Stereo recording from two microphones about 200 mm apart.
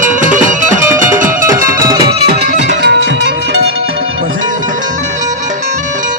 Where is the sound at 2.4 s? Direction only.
60° right (ahead or behind).